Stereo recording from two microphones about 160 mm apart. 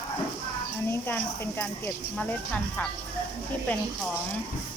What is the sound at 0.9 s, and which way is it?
Speech, 15° left (ahead or behind).